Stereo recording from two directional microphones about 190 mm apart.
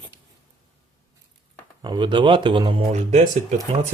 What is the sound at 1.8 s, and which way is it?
Speech, 25° right (ahead or behind).